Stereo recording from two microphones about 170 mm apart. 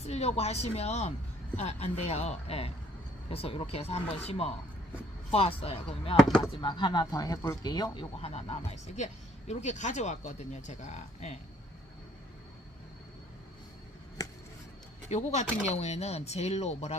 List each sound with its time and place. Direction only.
0.0 s speech: 40° left (ahead or behind)
6.2 s speech: centre (ahead or behind)
6.5 s speech: 25° left (ahead or behind)
14.2 s a sound: 20° left (ahead or behind)
15.1 s speech: 40° left (ahead or behind)